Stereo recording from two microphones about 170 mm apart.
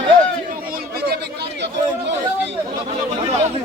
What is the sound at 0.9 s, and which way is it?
Chatter, 70° right (ahead or behind).